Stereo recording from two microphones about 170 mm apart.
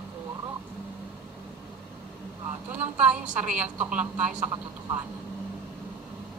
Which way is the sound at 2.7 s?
10° right (ahead or behind).